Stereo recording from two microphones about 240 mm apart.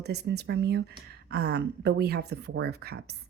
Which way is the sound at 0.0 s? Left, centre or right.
Right.